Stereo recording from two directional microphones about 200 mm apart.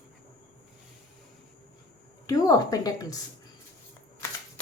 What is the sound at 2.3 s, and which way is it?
Speech, 20° left (ahead or behind).